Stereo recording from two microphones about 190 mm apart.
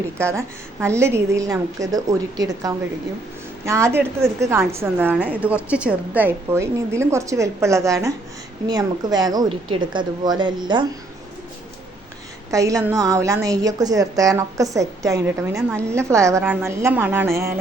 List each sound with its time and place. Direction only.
0.2 s a woman's voice: 15° right (ahead or behind)
12.5 s a woman's voice: 15° right (ahead or behind)